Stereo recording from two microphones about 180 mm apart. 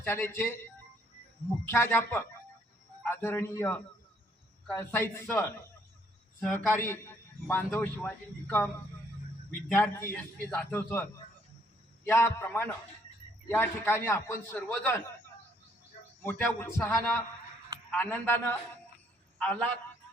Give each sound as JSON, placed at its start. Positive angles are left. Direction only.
{"t": 0.0, "sound": "a man's voice", "side_deg": 10}
{"t": 1.6, "sound": "a man's voice", "side_deg": 15}
{"t": 9.6, "sound": "a man's voice", "side_deg": 10}
{"t": 12.0, "sound": "a man's voice", "side_deg": 15}
{"t": 16.2, "sound": "a man's voice", "side_deg": 10}